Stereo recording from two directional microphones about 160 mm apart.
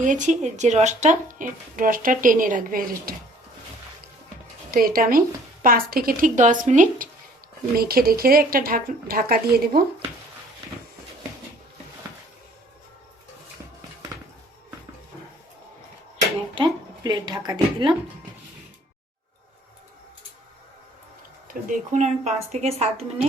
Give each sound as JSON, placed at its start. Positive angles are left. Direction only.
{"t": 0.0, "sound": "speech", "side_deg": -50}
{"t": 4.7, "sound": "speech", "side_deg": -65}
{"t": 7.8, "sound": "a woman's voice", "side_deg": -70}
{"t": 16.6, "sound": "a woman's voice", "side_deg": -25}
{"t": 21.4, "sound": "speech", "side_deg": -50}